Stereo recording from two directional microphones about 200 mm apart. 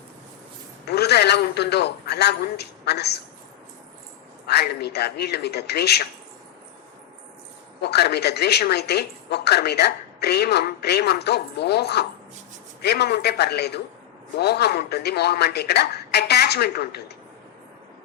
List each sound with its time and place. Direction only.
0.9 s a man's voice: 55° left (ahead or behind)
4.4 s a woman's voice: 55° left (ahead or behind)
7.8 s a woman's voice: 55° left (ahead or behind)